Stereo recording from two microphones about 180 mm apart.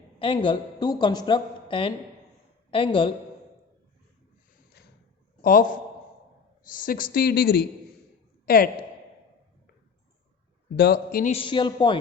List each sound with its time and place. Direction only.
0.2 s a woman's voice: 30° left (ahead or behind)
5.4 s a man's voice: 50° left (ahead or behind)
6.7 s a woman's voice: 50° left (ahead or behind)
10.8 s a woman's voice: 65° left (ahead or behind)
11.3 s a woman's voice: 30° left (ahead or behind)